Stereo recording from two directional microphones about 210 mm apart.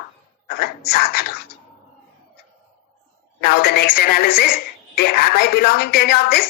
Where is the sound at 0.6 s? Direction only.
45° left (ahead or behind).